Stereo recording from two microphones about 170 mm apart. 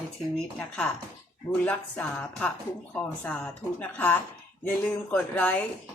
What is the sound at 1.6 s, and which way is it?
A woman's voice, 10° left (ahead or behind).